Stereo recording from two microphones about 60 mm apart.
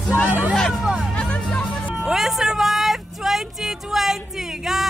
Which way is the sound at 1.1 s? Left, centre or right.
Centre.